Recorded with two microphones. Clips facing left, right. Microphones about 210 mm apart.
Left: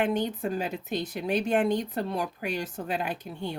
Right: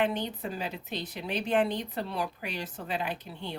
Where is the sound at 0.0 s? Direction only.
45° left (ahead or behind).